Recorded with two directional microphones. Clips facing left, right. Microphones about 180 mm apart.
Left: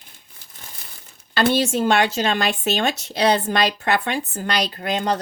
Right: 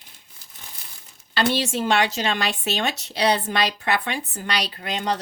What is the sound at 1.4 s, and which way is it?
Speech, 45° left (ahead or behind).